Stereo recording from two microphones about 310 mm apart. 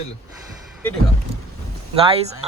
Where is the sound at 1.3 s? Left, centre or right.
Centre.